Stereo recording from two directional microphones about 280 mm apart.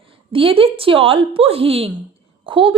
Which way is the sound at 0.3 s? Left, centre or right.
Centre.